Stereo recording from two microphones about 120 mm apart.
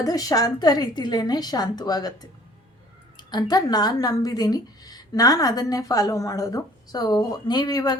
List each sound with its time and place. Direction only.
0.0 s speech: 30° left (ahead or behind)
3.2 s speech: 35° left (ahead or behind)